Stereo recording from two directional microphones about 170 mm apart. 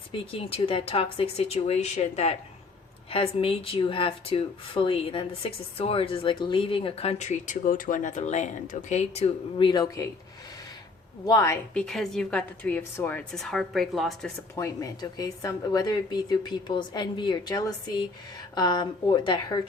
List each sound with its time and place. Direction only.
0.1 s speech: 35° left (ahead or behind)
11.3 s a woman's voice: 20° left (ahead or behind)
11.7 s a woman's voice: 5° left (ahead or behind)
14.5 s a woman's voice: 20° left (ahead or behind)